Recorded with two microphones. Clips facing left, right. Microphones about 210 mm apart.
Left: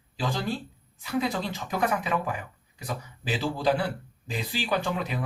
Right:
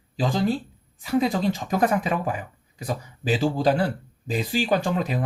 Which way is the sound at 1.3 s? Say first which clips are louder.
Right 7 dB; 45° right (ahead or behind).